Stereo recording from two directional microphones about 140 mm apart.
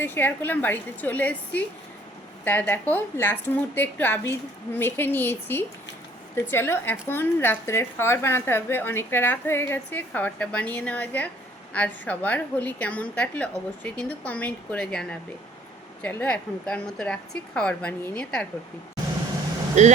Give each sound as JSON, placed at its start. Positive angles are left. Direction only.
{"t": 0.0, "sound": "a woman's voice", "side_deg": 15}
{"t": 16.0, "sound": "a woman's voice", "side_deg": 10}
{"t": 19.8, "sound": "speech", "side_deg": -55}